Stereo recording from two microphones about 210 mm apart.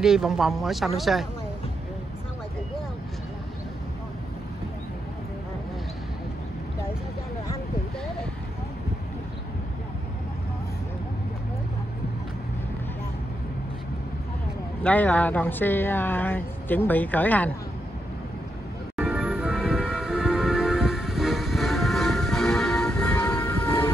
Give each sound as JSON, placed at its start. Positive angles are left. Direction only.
{"t": 0.0, "sound": "speech", "side_deg": 0}
{"t": 14.8, "sound": "speech", "side_deg": 5}
{"t": 18.9, "sound": "music", "side_deg": -5}